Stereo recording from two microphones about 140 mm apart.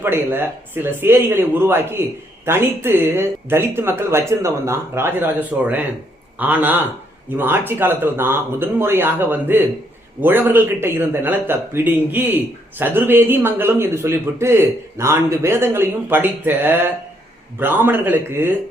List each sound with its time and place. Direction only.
0.0 s speech: 15° right (ahead or behind)